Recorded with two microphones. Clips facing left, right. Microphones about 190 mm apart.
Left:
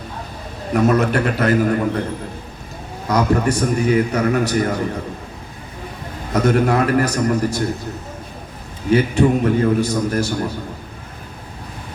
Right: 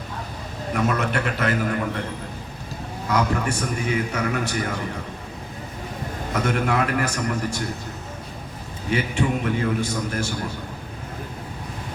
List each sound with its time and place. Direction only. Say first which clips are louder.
0.7 s a man's voice: left 8 dB; 40° left (ahead or behind)
3.1 s a man's voice: left 6 dB; 40° left (ahead or behind)
6.3 s a man's voice: left 7 dB; 40° left (ahead or behind)
8.9 s a man's voice: left 8 dB; 40° left (ahead or behind)